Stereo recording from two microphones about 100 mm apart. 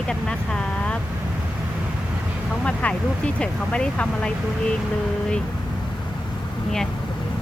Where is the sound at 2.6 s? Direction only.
10° left (ahead or behind).